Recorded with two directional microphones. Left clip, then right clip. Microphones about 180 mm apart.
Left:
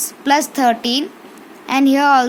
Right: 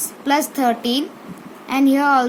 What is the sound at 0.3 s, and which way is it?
A woman's voice, 25° left (ahead or behind).